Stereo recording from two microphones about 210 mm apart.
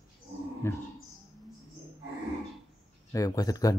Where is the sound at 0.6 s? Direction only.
10° left (ahead or behind).